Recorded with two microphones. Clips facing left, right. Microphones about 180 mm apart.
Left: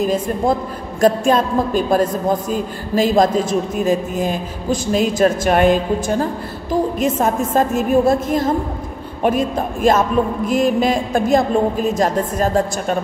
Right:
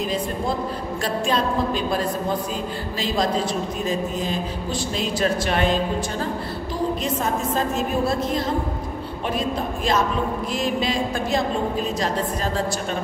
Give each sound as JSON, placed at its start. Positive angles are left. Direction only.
{"t": 0.0, "sound": "a man's voice", "side_deg": 45}